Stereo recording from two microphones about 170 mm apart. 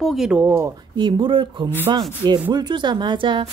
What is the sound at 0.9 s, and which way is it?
Speech, 30° right (ahead or behind).